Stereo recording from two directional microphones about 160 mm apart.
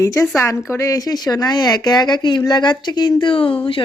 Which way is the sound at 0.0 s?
20° left (ahead or behind).